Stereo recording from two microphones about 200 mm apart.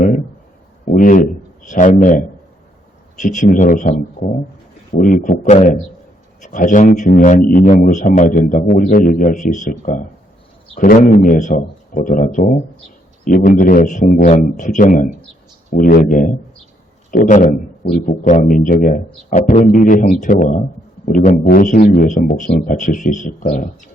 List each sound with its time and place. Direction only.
0.9 s a man's voice: 40° left (ahead or behind)